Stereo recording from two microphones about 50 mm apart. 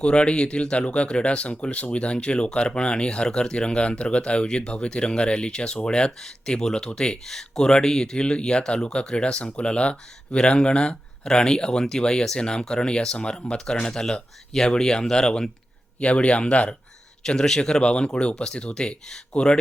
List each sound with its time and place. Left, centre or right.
0.0 s speech: left
16.0 s speech: left
17.2 s speech: centre